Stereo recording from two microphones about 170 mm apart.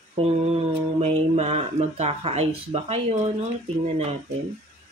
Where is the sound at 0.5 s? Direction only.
40° right (ahead or behind).